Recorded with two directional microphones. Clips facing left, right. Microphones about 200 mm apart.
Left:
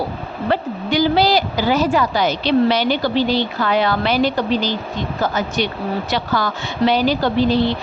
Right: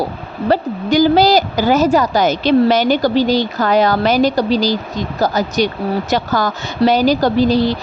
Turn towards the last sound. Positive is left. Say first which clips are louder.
# right 3 dB
turn(degrees=-40)  # may be behind; listen again after turning